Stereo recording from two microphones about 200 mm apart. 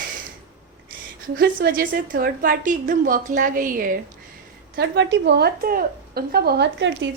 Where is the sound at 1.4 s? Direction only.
45° right (ahead or behind).